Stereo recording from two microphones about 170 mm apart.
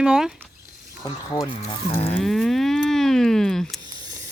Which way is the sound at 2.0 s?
35° left (ahead or behind).